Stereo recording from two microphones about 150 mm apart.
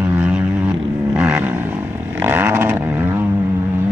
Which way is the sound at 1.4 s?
10° right (ahead or behind).